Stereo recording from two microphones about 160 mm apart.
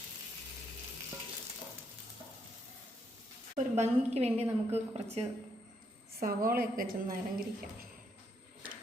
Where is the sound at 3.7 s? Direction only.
40° right (ahead or behind).